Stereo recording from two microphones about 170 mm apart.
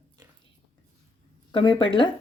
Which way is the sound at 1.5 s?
30° left (ahead or behind).